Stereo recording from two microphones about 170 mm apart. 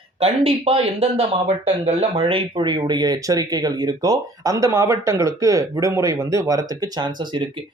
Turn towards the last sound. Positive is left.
turn(degrees=-25)  # may be behind; listen again after turning